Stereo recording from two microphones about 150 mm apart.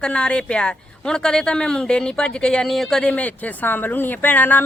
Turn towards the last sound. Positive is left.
turn(degrees=10)  # may be behind; listen again after turning